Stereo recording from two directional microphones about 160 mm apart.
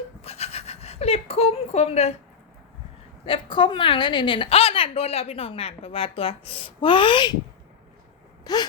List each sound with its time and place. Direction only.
0.2 s a sound: 40° left (ahead or behind)
3.2 s a woman's voice: 30° left (ahead or behind)
8.5 s gasp: 25° left (ahead or behind)